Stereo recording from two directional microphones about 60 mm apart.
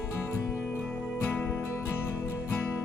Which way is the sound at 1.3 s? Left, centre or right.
Left.